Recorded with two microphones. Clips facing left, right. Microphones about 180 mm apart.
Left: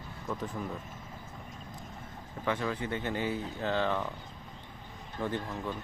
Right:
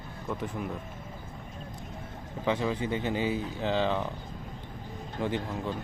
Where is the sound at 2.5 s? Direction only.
15° right (ahead or behind).